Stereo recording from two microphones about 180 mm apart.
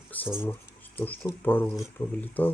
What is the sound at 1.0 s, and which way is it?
Speech, 10° left (ahead or behind).